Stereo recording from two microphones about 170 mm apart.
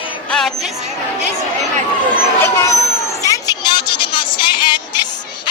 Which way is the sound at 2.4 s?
20° left (ahead or behind).